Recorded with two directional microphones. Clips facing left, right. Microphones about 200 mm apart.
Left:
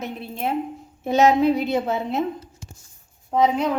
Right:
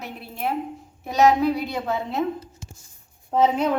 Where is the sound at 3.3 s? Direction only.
5° right (ahead or behind).